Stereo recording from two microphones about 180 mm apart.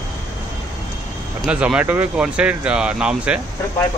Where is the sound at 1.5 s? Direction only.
5° right (ahead or behind).